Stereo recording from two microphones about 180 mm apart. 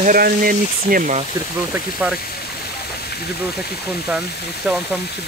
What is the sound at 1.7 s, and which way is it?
Speech, 10° right (ahead or behind).